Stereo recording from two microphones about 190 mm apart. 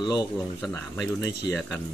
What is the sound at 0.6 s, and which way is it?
Speech, 5° left (ahead or behind).